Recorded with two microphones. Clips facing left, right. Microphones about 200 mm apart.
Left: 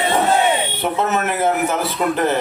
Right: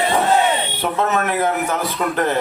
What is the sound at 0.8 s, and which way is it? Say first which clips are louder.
Speech: even; 5° left (ahead or behind).